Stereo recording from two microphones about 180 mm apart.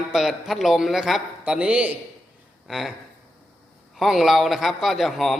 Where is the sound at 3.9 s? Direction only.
Centre (ahead or behind).